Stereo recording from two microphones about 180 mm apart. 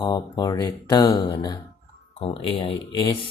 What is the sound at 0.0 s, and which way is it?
Speech, 20° left (ahead or behind).